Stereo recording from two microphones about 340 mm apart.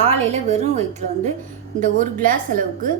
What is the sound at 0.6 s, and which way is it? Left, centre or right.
Speech, centre.